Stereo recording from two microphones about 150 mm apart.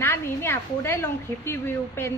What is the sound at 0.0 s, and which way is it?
A woman's voice, 15° left (ahead or behind).